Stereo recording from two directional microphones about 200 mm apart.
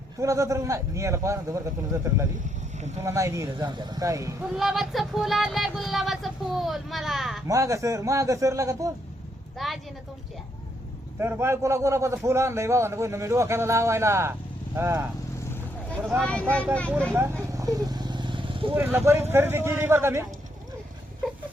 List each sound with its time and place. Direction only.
0.2 s a man's voice: 15° right (ahead or behind)
2.7 s speech: 35° right (ahead or behind)
3.0 s a man's voice: 15° right (ahead or behind)
4.4 s music: centre (ahead or behind)
7.4 s a man's voice: 15° right (ahead or behind)
9.6 s music: centre (ahead or behind)
11.2 s a man's voice: 10° right (ahead or behind)
16.1 s music: 5° left (ahead or behind)
17.5 s vehicle: 15° right (ahead or behind)
18.7 s a man's voice: 10° right (ahead or behind)